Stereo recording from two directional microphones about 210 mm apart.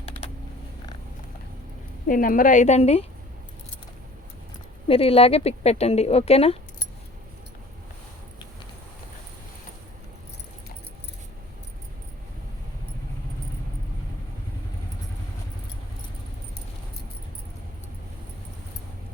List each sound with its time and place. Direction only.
0.0 s typing: 30° left (ahead or behind)
2.0 s a woman's voice: 40° left (ahead or behind)
4.9 s speech: 25° left (ahead or behind)